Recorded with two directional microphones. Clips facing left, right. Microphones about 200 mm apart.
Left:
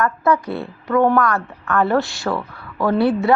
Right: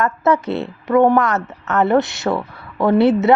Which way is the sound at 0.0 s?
25° right (ahead or behind).